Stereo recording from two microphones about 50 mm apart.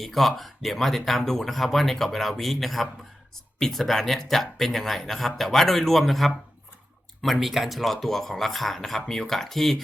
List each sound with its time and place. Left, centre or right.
0.0 s speech: centre